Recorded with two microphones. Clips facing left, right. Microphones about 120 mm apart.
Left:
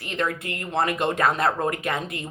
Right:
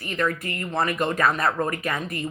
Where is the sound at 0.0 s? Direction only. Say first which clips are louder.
Right 1 dB; 25° left (ahead or behind).